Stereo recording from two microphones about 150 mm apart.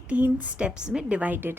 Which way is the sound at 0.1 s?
10° right (ahead or behind).